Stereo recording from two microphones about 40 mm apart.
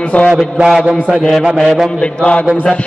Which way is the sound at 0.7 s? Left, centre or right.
Centre.